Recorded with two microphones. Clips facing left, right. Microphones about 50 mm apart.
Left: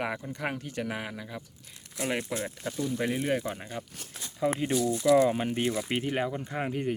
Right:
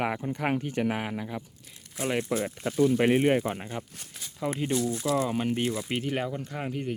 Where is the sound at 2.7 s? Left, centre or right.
Right.